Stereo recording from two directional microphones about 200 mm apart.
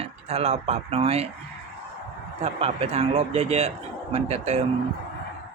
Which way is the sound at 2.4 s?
30° right (ahead or behind).